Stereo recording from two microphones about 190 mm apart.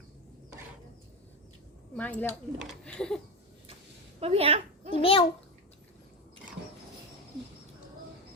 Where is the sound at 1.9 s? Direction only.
10° left (ahead or behind).